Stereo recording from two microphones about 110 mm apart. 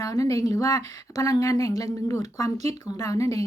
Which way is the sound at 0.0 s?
30° left (ahead or behind).